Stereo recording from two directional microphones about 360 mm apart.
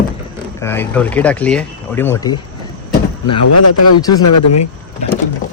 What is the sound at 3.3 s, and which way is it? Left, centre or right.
A man's voice, left.